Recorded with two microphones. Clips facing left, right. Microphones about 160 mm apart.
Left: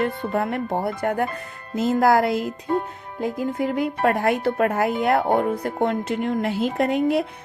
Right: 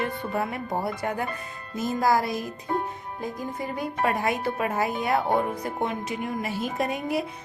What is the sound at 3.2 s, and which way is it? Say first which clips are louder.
Music: left 9 dB; 70° left (ahead or behind).